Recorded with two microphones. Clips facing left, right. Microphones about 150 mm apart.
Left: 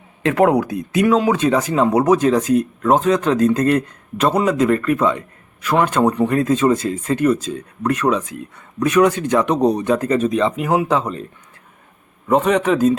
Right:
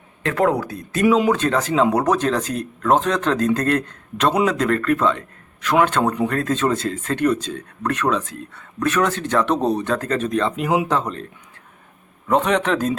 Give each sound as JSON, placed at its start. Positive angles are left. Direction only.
{"t": 0.3, "sound": "speech", "side_deg": 15}
{"t": 1.0, "sound": "speech", "side_deg": -5}
{"t": 1.3, "sound": "speech", "side_deg": 10}
{"t": 12.3, "sound": "speech", "side_deg": 5}